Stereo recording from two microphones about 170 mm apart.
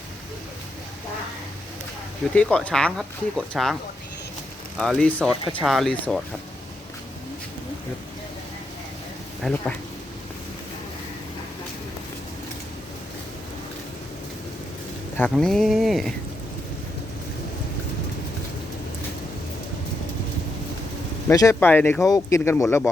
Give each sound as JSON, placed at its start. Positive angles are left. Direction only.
{"t": 2.3, "sound": "speech", "side_deg": 5}
{"t": 4.8, "sound": "speech", "side_deg": 5}
{"t": 9.4, "sound": "speech", "side_deg": 5}
{"t": 15.2, "sound": "speech", "side_deg": 5}
{"t": 21.2, "sound": "speech", "side_deg": 15}
{"t": 22.0, "sound": "speech", "side_deg": 20}